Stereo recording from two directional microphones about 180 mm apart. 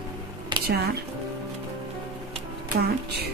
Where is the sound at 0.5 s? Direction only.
25° right (ahead or behind).